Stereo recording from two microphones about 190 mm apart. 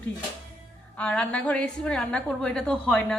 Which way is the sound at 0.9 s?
5° left (ahead or behind).